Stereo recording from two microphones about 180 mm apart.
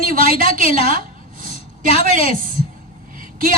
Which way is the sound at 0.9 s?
50° right (ahead or behind).